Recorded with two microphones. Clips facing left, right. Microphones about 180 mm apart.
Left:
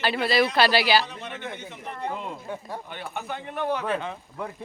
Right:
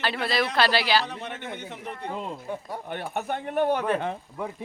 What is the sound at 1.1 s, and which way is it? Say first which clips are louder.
Speech: right 2 dB; 50° right (ahead or behind).